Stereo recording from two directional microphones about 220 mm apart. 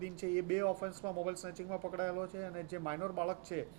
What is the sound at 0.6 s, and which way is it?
Speech, 25° right (ahead or behind).